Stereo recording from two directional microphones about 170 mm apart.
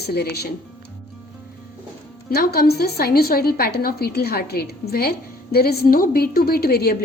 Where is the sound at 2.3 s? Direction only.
65° left (ahead or behind).